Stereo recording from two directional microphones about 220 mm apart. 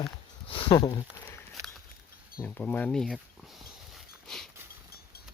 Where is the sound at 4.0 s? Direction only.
Centre (ahead or behind).